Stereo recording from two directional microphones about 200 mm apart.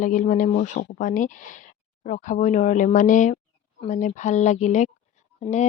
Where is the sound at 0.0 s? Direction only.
40° left (ahead or behind).